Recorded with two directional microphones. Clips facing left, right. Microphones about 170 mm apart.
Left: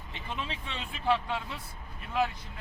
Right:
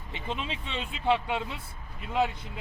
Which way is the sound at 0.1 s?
20° right (ahead or behind).